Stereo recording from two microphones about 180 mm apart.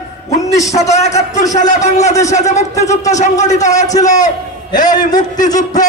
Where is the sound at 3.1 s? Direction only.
40° left (ahead or behind).